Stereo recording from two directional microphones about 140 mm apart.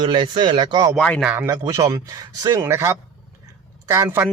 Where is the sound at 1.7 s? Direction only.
25° right (ahead or behind).